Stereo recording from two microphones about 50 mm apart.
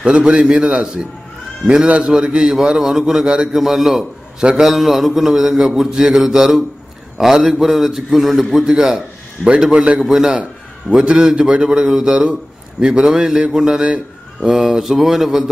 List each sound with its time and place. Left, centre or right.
0.0 s a man's voice: centre
4.4 s a man's voice: centre
4.6 s a man's voice: centre; by 14.5 s right
14.5 s a man's voice: centre